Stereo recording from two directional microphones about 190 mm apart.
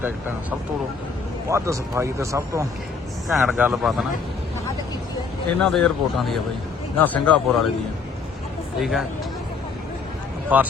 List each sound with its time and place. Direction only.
1.5 s speech: 15° right (ahead or behind)
3.2 s speech: 5° right (ahead or behind)
5.6 s speech: centre (ahead or behind)
8.8 s speech: centre (ahead or behind)
10.5 s speech: 10° right (ahead or behind)